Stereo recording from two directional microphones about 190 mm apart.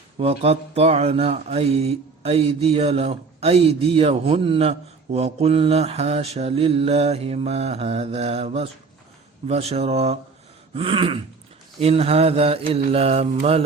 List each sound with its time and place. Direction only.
0.2 s mantra: 30° right (ahead or behind)
10.8 s throat clearing: 30° right (ahead or behind)
11.8 s mantra: 30° right (ahead or behind)